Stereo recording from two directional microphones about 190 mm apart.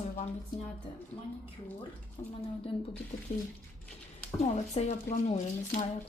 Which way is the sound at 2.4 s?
30° left (ahead or behind).